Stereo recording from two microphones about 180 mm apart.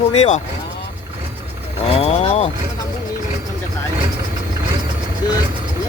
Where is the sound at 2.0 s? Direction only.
35° left (ahead or behind).